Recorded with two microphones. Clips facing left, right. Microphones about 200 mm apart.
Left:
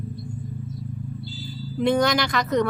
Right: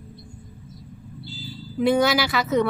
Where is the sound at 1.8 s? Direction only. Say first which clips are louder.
Right 1 dB; 5° right (ahead or behind).